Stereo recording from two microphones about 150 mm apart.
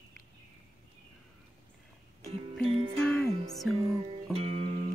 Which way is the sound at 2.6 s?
40° right (ahead or behind).